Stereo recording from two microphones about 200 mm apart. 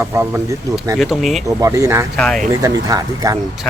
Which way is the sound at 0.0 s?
10° right (ahead or behind).